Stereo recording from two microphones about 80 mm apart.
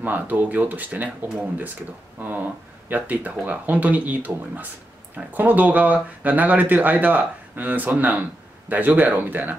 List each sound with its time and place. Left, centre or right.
0.0 s speech: right